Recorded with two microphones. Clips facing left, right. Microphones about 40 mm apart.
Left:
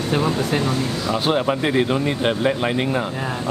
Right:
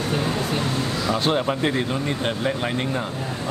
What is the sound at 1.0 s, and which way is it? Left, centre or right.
Speech, centre.